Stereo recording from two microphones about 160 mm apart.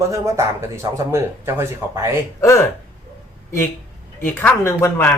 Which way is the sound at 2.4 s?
15° left (ahead or behind).